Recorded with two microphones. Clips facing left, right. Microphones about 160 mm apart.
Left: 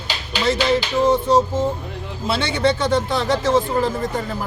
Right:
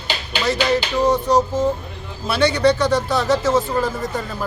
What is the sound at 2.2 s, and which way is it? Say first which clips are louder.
Speech: right 3 dB; 25° left (ahead or behind).